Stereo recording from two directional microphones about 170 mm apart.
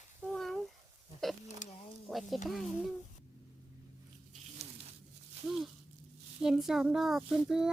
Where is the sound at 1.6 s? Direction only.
45° left (ahead or behind).